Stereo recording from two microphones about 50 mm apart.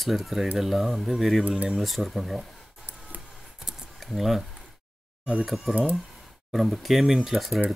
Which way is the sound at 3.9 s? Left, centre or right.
Centre.